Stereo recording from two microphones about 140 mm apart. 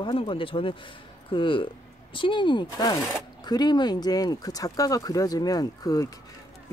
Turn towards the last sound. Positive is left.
turn(degrees=25)  # may be behind; listen again after turning